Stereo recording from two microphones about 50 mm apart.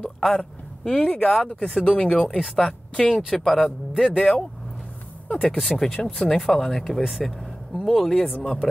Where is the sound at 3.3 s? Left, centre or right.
Centre.